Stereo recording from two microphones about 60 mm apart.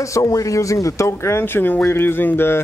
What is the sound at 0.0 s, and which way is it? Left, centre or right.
Speech, left.